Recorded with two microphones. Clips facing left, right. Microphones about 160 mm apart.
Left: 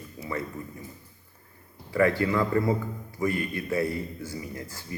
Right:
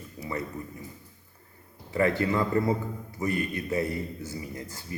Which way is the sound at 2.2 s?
25° right (ahead or behind).